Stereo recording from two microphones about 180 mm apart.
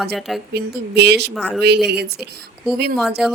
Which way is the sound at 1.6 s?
65° right (ahead or behind).